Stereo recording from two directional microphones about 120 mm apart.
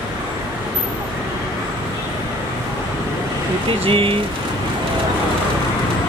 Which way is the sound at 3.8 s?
50° right (ahead or behind).